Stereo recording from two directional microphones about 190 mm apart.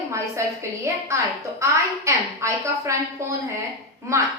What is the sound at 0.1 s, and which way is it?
A woman's voice, 15° right (ahead or behind).